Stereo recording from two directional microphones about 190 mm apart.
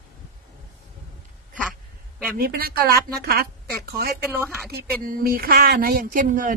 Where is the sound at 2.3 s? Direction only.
50° right (ahead or behind).